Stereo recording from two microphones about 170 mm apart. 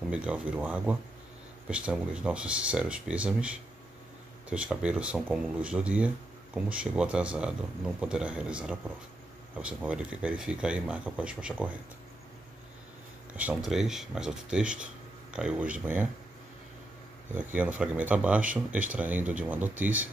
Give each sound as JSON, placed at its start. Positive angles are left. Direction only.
{"t": 0.1, "sound": "speech", "side_deg": -5}
{"t": 13.4, "sound": "speech", "side_deg": -5}
{"t": 17.4, "sound": "speech", "side_deg": -10}